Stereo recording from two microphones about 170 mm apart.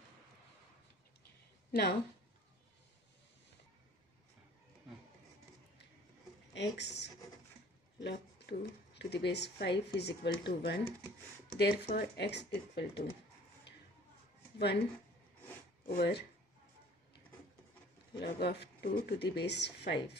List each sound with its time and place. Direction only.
1.7 s a woman's voice: 65° left (ahead or behind)
6.5 s speech: 90° left
15.9 s speech: 70° left (ahead or behind)
18.2 s speech: 75° left (ahead or behind)